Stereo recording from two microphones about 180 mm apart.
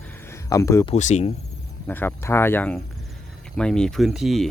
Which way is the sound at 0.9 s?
40° left (ahead or behind).